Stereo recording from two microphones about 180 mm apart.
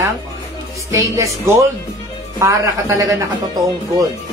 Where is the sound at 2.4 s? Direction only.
15° right (ahead or behind).